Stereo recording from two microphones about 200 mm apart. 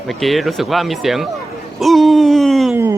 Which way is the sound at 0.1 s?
Centre (ahead or behind).